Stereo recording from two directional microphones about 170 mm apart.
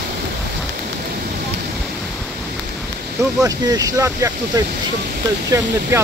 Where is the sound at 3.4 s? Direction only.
20° right (ahead or behind).